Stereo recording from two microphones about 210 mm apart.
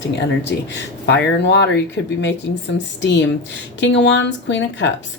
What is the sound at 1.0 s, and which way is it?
Speech, 55° left (ahead or behind).